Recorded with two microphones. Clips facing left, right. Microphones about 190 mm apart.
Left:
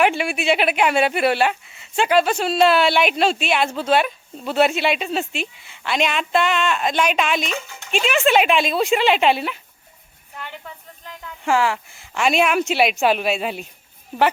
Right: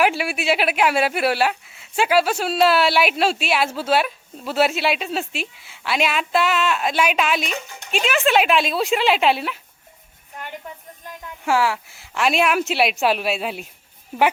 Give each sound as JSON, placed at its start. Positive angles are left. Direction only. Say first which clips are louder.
{"t": 0.0, "sound": "speech", "louder": "left 1 dB", "side_deg": -5}
{"t": 7.5, "sound": "speech", "louder": "left 1 dB", "side_deg": -15}
{"t": 8.0, "sound": "speech", "louder": "left 1 dB", "side_deg": 0}
{"t": 11.4, "sound": "speech", "louder": "left 1 dB", "side_deg": -5}